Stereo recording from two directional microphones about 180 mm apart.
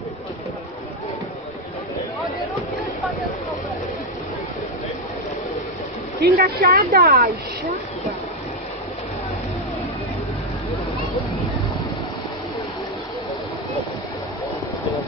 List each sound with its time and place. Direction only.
6.2 s speech: 50° right (ahead or behind)